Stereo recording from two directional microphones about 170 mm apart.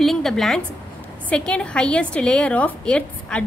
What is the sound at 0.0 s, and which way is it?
A woman's voice, centre (ahead or behind).